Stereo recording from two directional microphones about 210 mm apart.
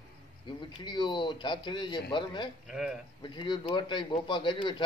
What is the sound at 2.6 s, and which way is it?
Speech, 5° right (ahead or behind).